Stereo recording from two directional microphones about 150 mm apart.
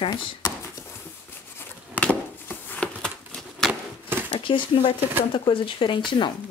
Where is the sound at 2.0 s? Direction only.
10° left (ahead or behind).